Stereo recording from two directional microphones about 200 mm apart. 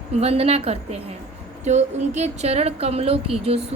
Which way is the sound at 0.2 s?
30° right (ahead or behind).